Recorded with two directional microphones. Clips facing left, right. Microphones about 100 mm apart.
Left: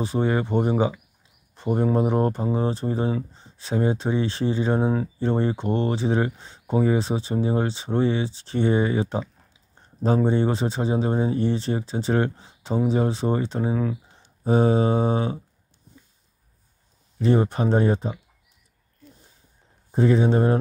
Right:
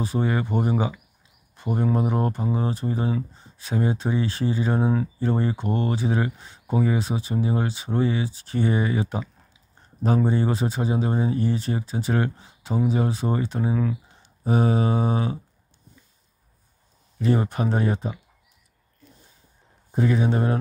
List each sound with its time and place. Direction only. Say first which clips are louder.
0.0 s speech: left 2 dB; 25° left (ahead or behind)
17.2 s speech: left 2 dB; 25° left (ahead or behind)
20.0 s speech: left 3 dB; 30° left (ahead or behind)